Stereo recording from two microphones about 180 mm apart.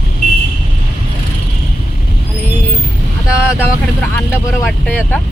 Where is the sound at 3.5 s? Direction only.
10° left (ahead or behind).